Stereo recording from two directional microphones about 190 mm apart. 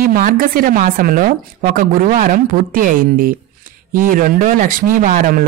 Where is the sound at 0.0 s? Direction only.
50° right (ahead or behind).